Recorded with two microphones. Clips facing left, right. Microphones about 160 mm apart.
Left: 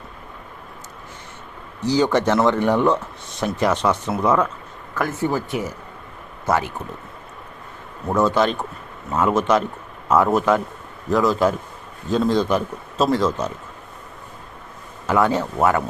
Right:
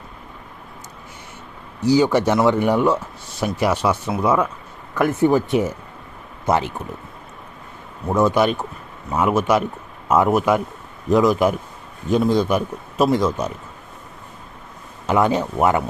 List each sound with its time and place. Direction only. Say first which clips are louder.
1.8 s speech: right 2 dB; 10° right (ahead or behind)
8.0 s speech: right 1 dB; 15° right (ahead or behind)
15.0 s speech: right 1 dB; 20° right (ahead or behind)